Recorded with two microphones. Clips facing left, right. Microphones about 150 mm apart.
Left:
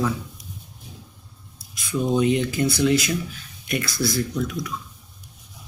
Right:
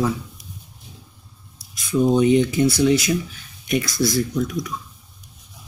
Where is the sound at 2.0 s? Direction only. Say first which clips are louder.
Right 5 dB; 20° right (ahead or behind).